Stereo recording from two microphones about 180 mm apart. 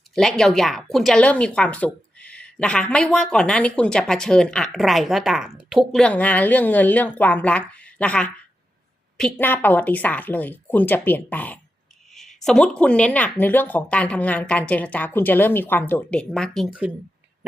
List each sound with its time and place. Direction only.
0.1 s a woman's voice: centre (ahead or behind)